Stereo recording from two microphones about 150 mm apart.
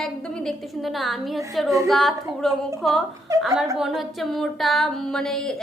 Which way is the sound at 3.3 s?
20° right (ahead or behind).